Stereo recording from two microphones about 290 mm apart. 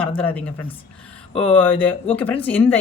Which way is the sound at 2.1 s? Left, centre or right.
Centre.